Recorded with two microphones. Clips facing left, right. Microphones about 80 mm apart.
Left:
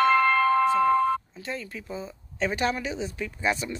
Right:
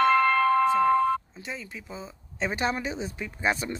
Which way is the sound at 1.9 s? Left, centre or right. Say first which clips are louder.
Left 4 dB; right.